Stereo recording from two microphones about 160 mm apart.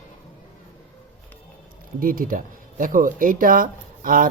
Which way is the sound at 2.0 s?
60° right (ahead or behind).